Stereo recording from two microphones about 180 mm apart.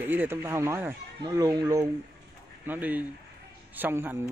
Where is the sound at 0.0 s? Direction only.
10° right (ahead or behind).